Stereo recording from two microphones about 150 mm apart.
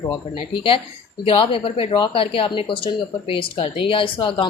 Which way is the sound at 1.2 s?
35° left (ahead or behind).